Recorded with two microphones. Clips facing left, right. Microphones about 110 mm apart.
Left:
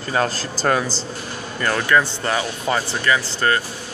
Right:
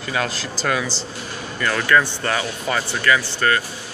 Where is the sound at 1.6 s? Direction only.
20° left (ahead or behind).